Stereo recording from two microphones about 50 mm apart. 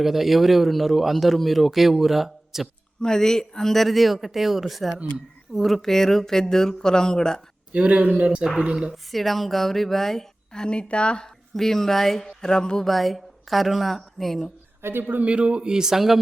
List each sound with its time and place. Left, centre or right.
0.0 s a man's voice: centre
3.0 s a man's voice: centre
7.7 s a man's voice: right
9.1 s speech: centre; by 11.3 s left
11.5 s speech: centre
12.8 s a man's voice: centre
14.8 s speech: right
15.3 s a man's voice: right
15.7 s speech: centre